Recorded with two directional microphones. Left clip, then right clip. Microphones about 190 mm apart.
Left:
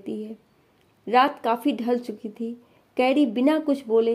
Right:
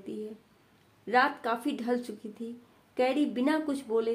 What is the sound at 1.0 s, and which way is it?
Speech, 35° left (ahead or behind).